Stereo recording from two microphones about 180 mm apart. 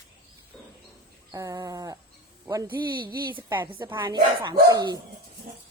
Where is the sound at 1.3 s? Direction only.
20° right (ahead or behind).